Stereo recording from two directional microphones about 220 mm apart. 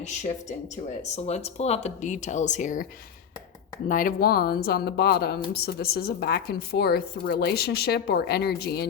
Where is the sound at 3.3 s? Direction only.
15° left (ahead or behind).